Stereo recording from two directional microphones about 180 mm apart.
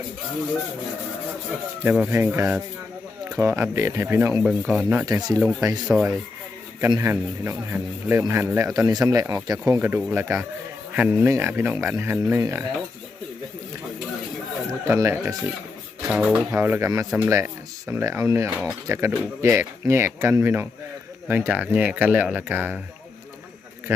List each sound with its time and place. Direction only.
1.8 s speech: 10° right (ahead or behind)
5.4 s speech: 15° right (ahead or behind)
5.9 s speech: 5° right (ahead or behind)
6.8 s speech: 15° right (ahead or behind)
14.8 s speech: 15° right (ahead or behind)
16.0 s speech: 5° right (ahead or behind)